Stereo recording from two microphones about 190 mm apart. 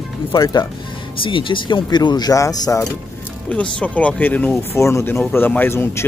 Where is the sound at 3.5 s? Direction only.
5° left (ahead or behind).